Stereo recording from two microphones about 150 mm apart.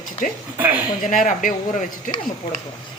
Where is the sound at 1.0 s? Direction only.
60° left (ahead or behind).